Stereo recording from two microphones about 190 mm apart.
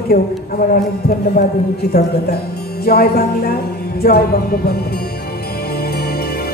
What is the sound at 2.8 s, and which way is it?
Speech, 55° left (ahead or behind).